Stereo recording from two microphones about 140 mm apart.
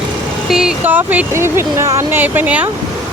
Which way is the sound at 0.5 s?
10° right (ahead or behind).